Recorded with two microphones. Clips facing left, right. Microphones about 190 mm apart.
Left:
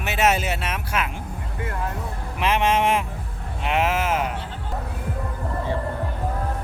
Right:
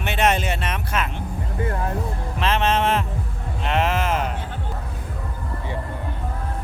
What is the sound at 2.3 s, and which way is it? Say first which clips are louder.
Speech: left 1 dB; 15° left (ahead or behind).